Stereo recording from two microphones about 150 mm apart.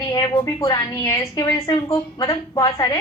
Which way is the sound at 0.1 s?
30° left (ahead or behind).